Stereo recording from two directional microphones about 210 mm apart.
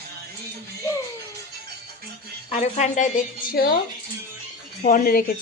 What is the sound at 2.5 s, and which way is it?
Speech, 35° left (ahead or behind).